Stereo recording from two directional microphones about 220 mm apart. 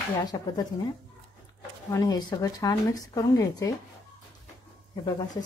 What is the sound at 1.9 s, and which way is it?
A woman's voice, 15° left (ahead or behind).